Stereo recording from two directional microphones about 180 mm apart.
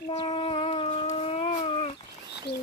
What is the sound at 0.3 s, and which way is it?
Dog, 30° left (ahead or behind).